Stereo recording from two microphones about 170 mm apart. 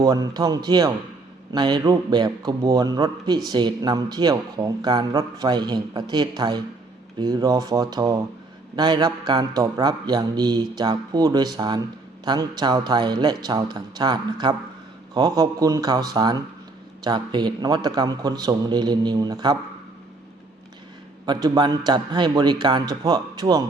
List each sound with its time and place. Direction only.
0.0 s a man's voice: 20° right (ahead or behind)
21.2 s a man's voice: 25° right (ahead or behind)